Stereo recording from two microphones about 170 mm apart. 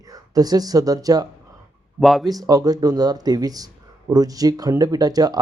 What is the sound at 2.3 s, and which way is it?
Speech, 20° right (ahead or behind).